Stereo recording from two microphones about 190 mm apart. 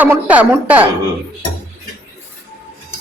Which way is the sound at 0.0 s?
10° right (ahead or behind).